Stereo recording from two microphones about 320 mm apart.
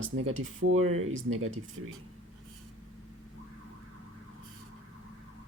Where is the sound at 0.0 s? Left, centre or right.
Right.